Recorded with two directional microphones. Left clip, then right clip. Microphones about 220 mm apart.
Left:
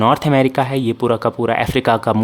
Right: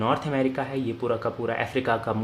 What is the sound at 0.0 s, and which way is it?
Speech, 50° left (ahead or behind).